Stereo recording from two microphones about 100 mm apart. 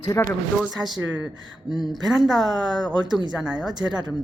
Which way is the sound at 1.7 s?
45° left (ahead or behind).